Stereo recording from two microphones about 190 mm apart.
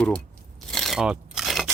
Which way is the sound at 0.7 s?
Centre (ahead or behind).